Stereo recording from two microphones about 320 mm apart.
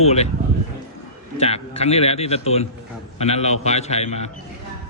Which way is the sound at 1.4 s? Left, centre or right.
Centre.